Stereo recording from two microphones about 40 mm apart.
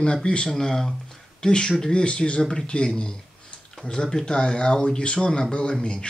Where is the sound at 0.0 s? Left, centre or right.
Left.